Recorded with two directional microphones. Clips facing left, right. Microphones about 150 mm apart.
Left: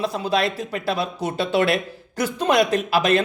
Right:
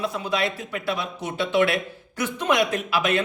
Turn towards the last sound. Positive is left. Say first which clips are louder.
# left 5 dB
turn(degrees=35)  # may be behind; listen again after turning